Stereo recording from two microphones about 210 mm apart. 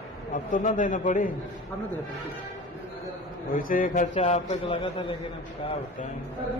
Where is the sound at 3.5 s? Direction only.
40° left (ahead or behind); by 5.1 s 25° left (ahead or behind).